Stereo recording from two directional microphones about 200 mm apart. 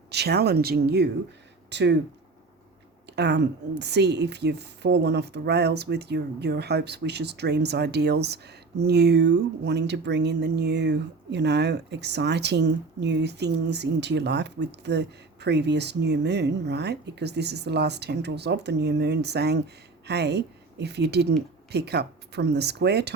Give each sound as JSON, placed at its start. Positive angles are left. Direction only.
{"t": 0.1, "sound": "speech", "side_deg": -55}
{"t": 3.2, "sound": "speech", "side_deg": -55}